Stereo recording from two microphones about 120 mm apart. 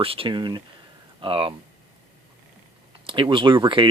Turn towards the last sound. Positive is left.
turn(degrees=-45)  # may be behind; listen again after turning